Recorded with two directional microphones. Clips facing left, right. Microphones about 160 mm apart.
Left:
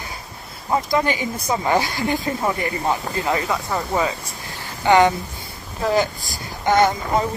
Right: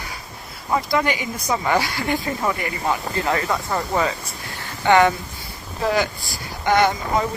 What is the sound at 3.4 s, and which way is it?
Speech, 5° left (ahead or behind).